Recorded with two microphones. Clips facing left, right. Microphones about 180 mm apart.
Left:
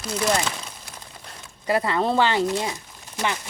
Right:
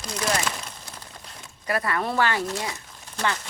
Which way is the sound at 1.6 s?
25° left (ahead or behind).